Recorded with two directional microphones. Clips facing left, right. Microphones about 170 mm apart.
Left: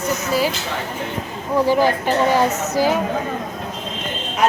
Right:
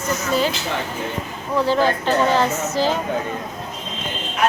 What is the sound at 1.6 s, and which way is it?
Speech, 10° left (ahead or behind).